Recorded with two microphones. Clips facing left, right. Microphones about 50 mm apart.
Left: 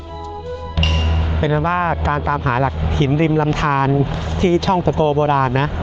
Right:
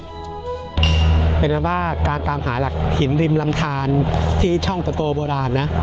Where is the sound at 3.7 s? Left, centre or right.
Left.